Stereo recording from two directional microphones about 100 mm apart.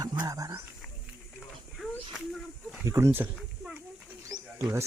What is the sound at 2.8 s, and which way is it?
Speech, 30° right (ahead or behind).